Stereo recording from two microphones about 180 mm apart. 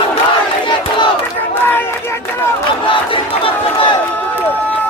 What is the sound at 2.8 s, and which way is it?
Crowd, 30° left (ahead or behind).